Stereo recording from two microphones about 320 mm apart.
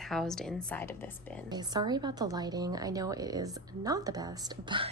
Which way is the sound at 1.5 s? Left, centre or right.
Centre.